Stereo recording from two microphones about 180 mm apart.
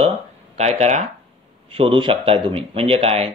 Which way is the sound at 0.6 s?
35° right (ahead or behind).